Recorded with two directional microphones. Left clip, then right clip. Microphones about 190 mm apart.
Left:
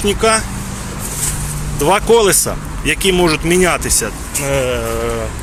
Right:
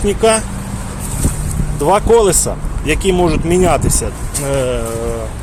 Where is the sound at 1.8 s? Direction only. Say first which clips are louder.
Right 1 dB; 5° right (ahead or behind).